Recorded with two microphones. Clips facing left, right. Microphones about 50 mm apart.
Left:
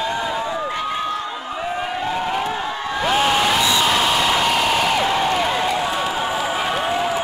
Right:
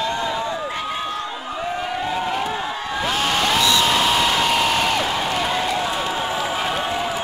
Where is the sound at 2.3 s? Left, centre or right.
Centre.